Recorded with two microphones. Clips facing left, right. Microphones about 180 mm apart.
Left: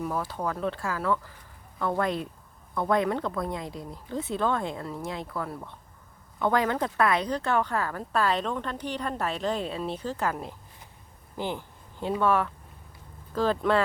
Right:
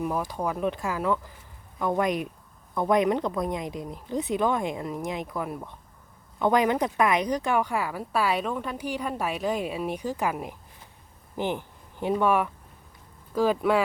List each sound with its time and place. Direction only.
0.0 s speech: 15° right (ahead or behind)
11.3 s a sound: 15° right (ahead or behind)
12.2 s speech: 15° right (ahead or behind)